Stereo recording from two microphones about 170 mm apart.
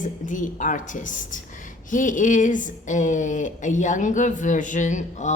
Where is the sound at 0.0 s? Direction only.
50° left (ahead or behind).